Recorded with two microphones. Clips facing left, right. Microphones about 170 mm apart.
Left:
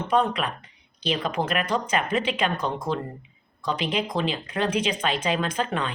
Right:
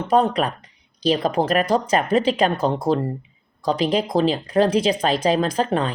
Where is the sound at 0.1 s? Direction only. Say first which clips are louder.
Right 5 dB; 40° right (ahead or behind).